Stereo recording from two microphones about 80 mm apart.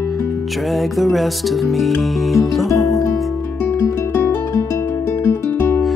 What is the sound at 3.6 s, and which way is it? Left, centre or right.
Music, left.